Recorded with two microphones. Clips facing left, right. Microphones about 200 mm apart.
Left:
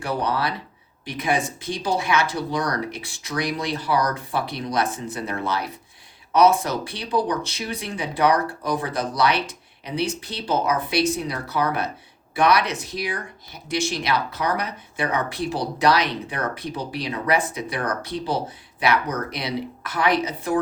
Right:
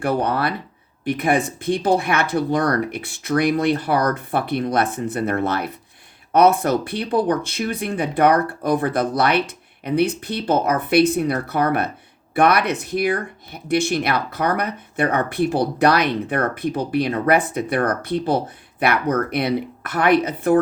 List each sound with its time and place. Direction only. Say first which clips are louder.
0.0 s speech: right 4 dB; 55° right (ahead or behind)